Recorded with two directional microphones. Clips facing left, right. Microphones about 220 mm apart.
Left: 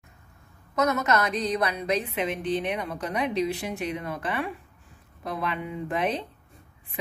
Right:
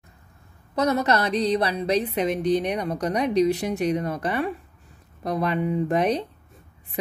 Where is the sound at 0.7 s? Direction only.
35° right (ahead or behind).